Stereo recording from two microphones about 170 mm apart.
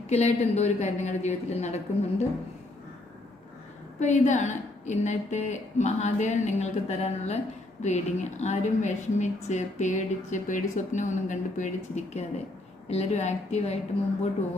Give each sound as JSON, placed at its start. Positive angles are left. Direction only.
{"t": 0.1, "sound": "a woman's voice", "side_deg": 40}
{"t": 4.0, "sound": "a woman's voice", "side_deg": 45}